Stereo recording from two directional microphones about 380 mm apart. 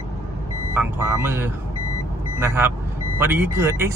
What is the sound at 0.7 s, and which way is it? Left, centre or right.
Speech, centre.